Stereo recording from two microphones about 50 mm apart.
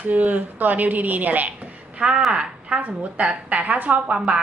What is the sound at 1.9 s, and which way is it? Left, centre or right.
A woman's voice, centre.